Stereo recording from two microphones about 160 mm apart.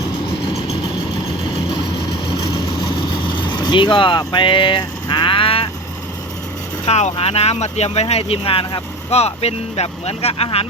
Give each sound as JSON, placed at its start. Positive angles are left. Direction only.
{"t": 2.8, "sound": "vehicle", "side_deg": 30}
{"t": 6.8, "sound": "speech", "side_deg": 40}